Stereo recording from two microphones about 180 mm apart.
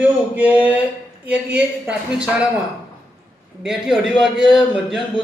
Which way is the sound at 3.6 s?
Centre (ahead or behind).